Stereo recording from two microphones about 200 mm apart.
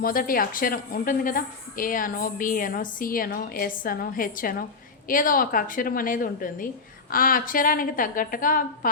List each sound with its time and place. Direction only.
0.0 s a woman's voice: 45° left (ahead or behind)